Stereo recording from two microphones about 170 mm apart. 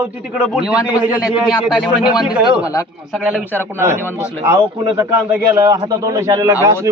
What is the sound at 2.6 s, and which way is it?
Speech, 20° left (ahead or behind).